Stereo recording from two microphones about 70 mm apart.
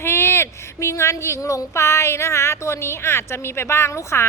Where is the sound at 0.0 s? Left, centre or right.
Left.